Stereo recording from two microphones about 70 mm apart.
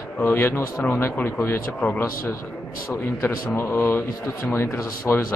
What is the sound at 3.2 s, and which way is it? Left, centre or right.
A man's voice, left.